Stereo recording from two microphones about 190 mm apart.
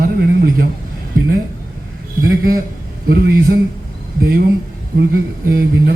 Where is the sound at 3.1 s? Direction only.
50° right (ahead or behind).